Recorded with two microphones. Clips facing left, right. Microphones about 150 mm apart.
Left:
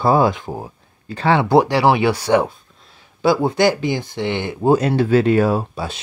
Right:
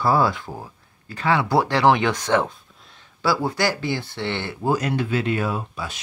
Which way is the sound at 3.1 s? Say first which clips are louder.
Left 6 dB; 20° left (ahead or behind).